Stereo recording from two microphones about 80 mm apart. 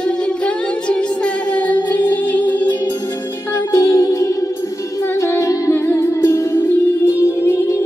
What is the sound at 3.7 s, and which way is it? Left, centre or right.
Music, left.